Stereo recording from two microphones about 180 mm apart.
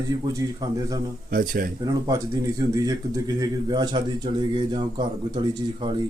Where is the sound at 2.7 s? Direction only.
20° right (ahead or behind).